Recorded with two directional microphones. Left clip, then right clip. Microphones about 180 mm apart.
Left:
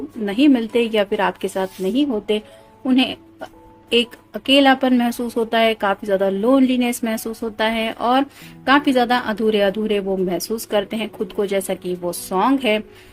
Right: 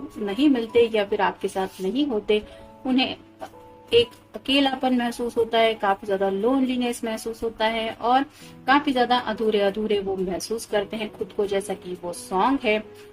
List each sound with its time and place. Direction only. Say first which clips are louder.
0.3 s a woman's voice: left 5 dB; 45° left (ahead or behind)